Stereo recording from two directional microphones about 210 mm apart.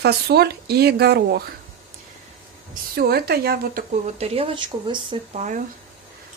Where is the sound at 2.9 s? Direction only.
45° right (ahead or behind).